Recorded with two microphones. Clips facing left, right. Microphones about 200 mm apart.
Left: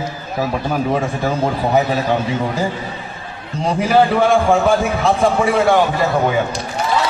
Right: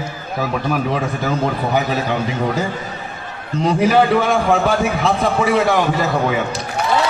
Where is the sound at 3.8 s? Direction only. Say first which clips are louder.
Left 1 dB; 30° left (ahead or behind).